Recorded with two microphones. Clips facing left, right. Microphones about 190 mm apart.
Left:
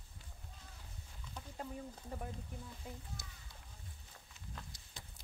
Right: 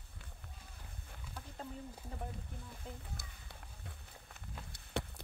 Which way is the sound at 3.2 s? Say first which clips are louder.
Right 1 dB; 60° right (ahead or behind).